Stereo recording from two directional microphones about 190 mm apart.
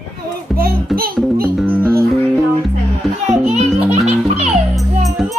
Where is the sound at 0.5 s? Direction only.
50° right (ahead or behind).